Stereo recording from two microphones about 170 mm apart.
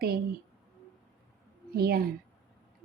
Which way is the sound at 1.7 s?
65° right (ahead or behind).